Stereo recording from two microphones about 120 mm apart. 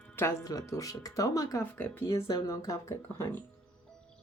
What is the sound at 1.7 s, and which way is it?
Speech, 15° left (ahead or behind).